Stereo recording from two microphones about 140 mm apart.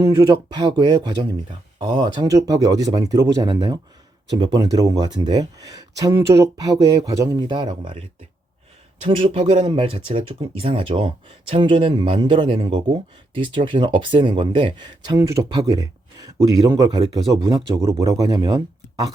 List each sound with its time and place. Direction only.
0.0 s speech: 25° right (ahead or behind)
9.0 s speech: 40° right (ahead or behind)
18.0 s speech: 25° right (ahead or behind)